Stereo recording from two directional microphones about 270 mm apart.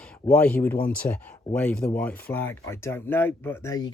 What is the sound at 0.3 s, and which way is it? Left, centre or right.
Speech, centre.